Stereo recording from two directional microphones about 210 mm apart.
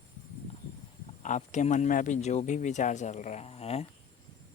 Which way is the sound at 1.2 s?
35° left (ahead or behind).